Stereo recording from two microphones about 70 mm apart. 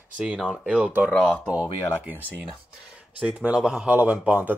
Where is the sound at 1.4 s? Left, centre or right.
Centre.